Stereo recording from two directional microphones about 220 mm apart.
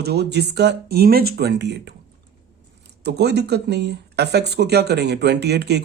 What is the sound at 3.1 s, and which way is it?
Speech, 50° right (ahead or behind).